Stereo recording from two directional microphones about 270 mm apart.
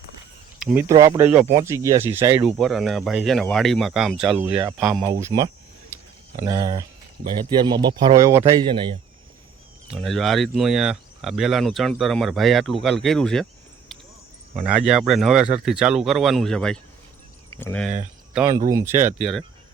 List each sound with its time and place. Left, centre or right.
0.6 s speech: centre
5.2 s speech: centre
9.9 s speech: centre
18.3 s speech: centre